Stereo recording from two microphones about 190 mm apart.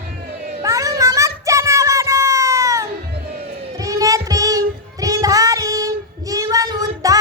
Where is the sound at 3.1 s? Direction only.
55° right (ahead or behind).